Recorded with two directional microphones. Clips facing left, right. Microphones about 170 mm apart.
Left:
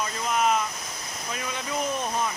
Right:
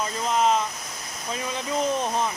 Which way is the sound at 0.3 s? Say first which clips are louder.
Right 2 dB; 30° right (ahead or behind).